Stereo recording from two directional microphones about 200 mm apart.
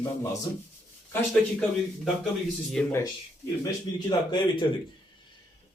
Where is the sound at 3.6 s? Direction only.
20° left (ahead or behind).